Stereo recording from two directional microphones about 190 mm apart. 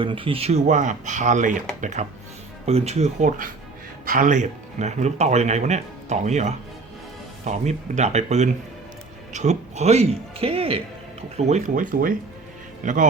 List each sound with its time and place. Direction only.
0.0 s a man's voice: 25° right (ahead or behind); by 13.1 s 45° right (ahead or behind)